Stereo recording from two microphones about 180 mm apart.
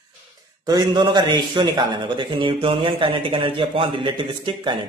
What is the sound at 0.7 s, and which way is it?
A man's voice, 25° right (ahead or behind).